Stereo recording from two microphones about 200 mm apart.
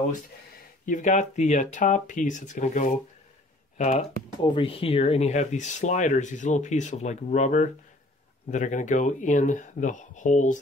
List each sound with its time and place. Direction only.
0.8 s speech: 40° left (ahead or behind)
4.4 s speech: 25° left (ahead or behind)